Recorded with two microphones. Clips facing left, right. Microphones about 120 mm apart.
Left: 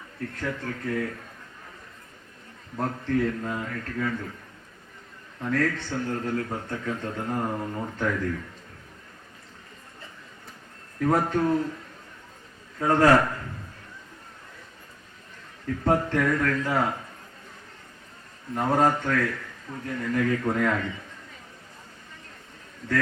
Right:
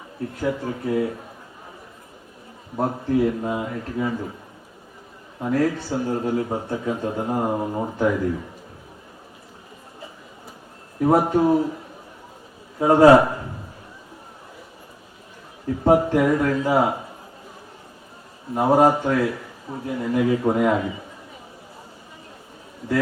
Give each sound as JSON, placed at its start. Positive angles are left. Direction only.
{"t": 0.2, "sound": "a man's voice", "side_deg": -15}
{"t": 2.7, "sound": "a man's voice", "side_deg": -20}
{"t": 5.4, "sound": "a man's voice", "side_deg": -20}
{"t": 11.0, "sound": "a man's voice", "side_deg": -20}
{"t": 15.6, "sound": "a man's voice", "side_deg": -20}
{"t": 18.5, "sound": "a man's voice", "side_deg": -15}